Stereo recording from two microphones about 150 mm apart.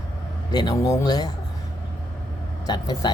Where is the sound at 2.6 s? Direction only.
25° left (ahead or behind).